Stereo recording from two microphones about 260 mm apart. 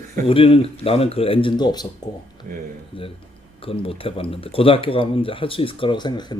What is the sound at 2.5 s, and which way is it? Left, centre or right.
Speech, right.